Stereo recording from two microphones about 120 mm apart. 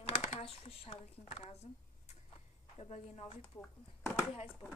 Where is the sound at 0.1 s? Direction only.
60° left (ahead or behind).